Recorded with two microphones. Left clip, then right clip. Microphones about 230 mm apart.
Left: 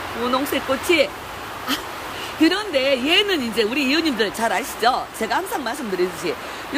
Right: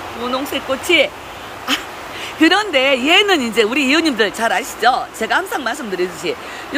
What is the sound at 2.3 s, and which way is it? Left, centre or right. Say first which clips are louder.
Speech: right 6 dB; centre.